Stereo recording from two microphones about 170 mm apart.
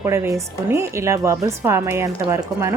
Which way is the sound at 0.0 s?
15° right (ahead or behind).